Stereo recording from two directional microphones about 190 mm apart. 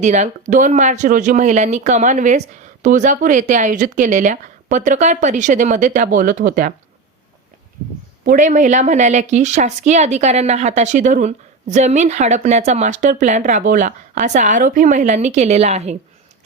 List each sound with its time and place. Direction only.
0.0 s speech: 40° right (ahead or behind)
8.2 s speech: 45° right (ahead or behind)